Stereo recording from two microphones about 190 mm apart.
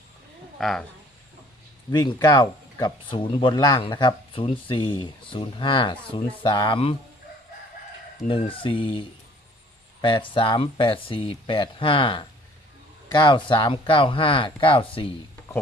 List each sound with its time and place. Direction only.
0.6 s speech: centre (ahead or behind)
1.9 s speech: 20° left (ahead or behind)
8.3 s speech: 25° left (ahead or behind)